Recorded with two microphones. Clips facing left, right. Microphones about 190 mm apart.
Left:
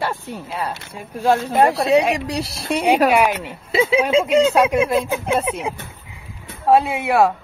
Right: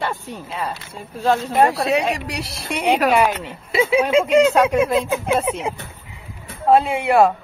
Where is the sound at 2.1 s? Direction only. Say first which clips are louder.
Left 4 dB; 25° left (ahead or behind).